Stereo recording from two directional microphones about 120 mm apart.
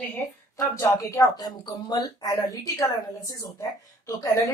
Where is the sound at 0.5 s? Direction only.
25° left (ahead or behind).